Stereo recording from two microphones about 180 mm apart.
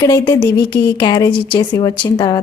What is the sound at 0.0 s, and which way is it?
A woman's voice, 20° left (ahead or behind).